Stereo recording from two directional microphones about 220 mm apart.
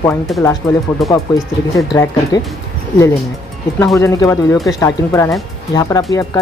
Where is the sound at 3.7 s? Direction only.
15° left (ahead or behind).